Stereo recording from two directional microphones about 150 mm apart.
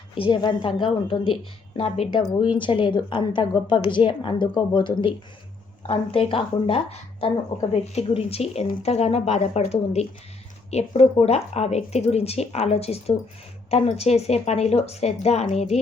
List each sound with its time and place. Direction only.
0.1 s a woman's voice: 35° left (ahead or behind)